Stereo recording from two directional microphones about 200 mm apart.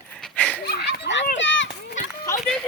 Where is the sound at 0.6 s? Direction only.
55° left (ahead or behind).